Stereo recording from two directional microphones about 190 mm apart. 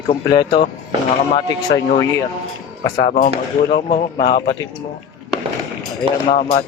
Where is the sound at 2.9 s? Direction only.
40° left (ahead or behind).